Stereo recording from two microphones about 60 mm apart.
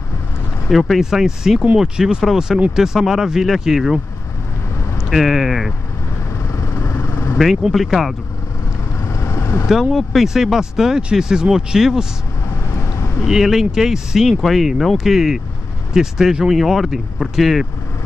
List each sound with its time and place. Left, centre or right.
0.7 s speech: centre
5.1 s speech: centre
6.4 s vehicle: left
7.3 s speech: centre
9.0 s vehicle: left
9.7 s speech: centre
13.3 s speech: centre